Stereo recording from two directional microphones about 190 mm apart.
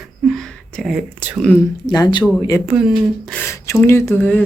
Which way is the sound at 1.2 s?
10° right (ahead or behind).